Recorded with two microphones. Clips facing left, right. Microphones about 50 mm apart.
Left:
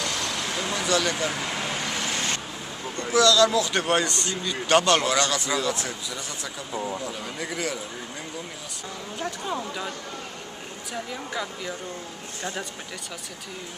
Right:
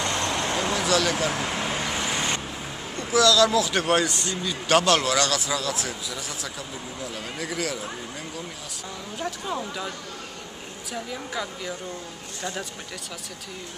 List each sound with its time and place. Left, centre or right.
0.0 s vehicle: right
0.7 s speech: centre
1.4 s vehicle: centre
3.0 s speech: centre
9.2 s speech: centre
10.9 s speech: centre